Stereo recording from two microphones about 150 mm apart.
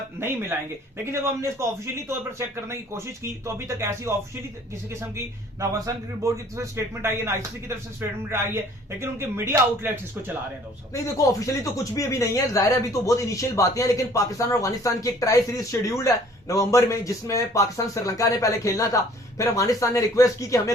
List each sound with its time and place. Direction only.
0.2 s speech: 15° right (ahead or behind)
10.9 s speech: 20° left (ahead or behind)